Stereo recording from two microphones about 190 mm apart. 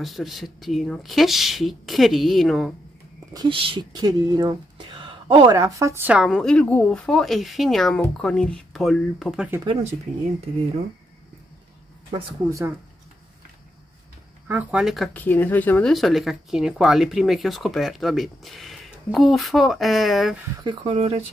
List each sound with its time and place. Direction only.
0.0 s speech: centre (ahead or behind)
3.3 s speech: 30° right (ahead or behind); by 9.5 s centre (ahead or behind)
12.1 s speech: 15° right (ahead or behind)
14.5 s speech: 5° right (ahead or behind)
20.6 s speech: 25° right (ahead or behind)